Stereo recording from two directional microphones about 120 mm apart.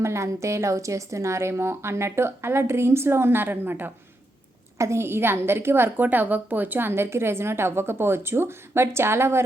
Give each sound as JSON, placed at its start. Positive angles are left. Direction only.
{"t": 0.0, "sound": "a woman's voice", "side_deg": -25}